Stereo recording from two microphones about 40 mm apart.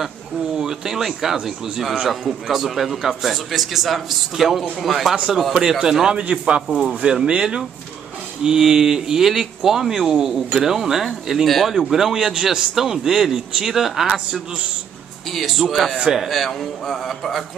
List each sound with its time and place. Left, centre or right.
0.6 s a man's voice: centre
5.1 s a man's voice: centre